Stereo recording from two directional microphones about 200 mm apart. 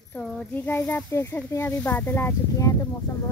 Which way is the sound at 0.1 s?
5° left (ahead or behind).